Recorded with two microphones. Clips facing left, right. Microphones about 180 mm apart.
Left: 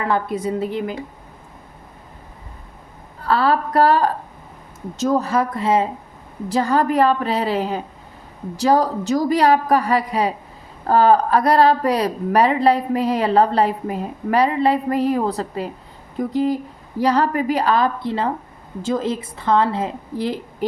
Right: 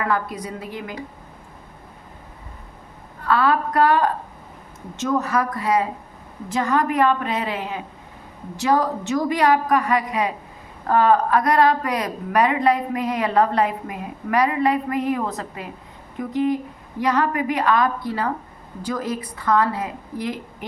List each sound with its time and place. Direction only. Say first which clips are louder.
0.0 s a woman's voice: left 3 dB; 25° left (ahead or behind)
3.2 s a woman's voice: left 1 dB; 35° left (ahead or behind)